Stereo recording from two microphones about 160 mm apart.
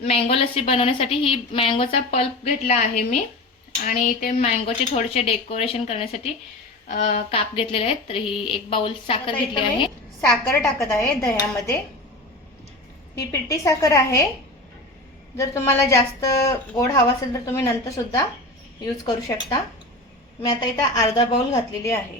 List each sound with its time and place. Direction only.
0.0 s a woman's voice: 40° left (ahead or behind)
10.2 s a woman's voice: 5° left (ahead or behind)
10.8 s a woman's voice: 20° left (ahead or behind)
13.1 s a woman's voice: 20° left (ahead or behind)
15.4 s a woman's voice: 15° left (ahead or behind)